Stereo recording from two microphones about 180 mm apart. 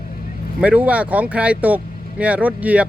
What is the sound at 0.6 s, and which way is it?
Speech, 5° right (ahead or behind).